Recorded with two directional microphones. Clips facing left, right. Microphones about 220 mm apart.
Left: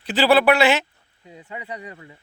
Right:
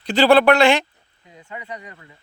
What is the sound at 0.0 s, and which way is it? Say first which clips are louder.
Speech: right 3 dB; 5° left (ahead or behind).